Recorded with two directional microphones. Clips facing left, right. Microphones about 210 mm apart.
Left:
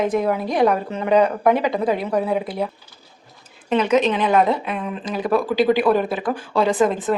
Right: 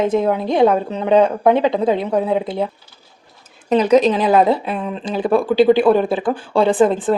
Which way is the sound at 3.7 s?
35° right (ahead or behind).